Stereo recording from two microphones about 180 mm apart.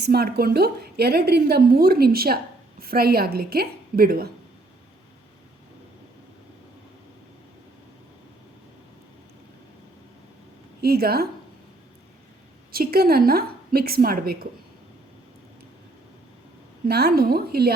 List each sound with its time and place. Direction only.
0.0 s a woman's voice: 60° right (ahead or behind)
10.8 s speech: 60° right (ahead or behind)
12.7 s a woman's voice: 55° right (ahead or behind)
16.9 s a woman's voice: 60° right (ahead or behind)